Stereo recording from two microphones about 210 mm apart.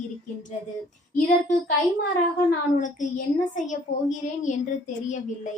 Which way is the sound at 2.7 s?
35° left (ahead or behind).